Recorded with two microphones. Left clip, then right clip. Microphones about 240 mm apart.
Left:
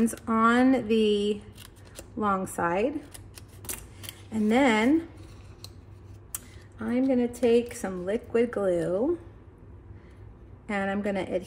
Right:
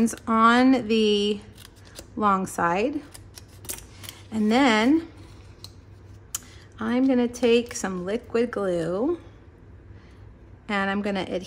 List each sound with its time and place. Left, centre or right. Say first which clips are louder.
0.0 s speech: right 2 dB; centre
0.3 s a woman's voice: right 4 dB; centre
3.1 s scissors: right 2 dB; centre
6.8 s a woman's voice: right 3 dB; centre
10.7 s a woman's voice: right 3 dB; centre